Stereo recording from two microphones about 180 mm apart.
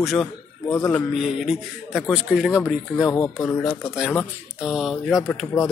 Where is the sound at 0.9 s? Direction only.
Centre (ahead or behind).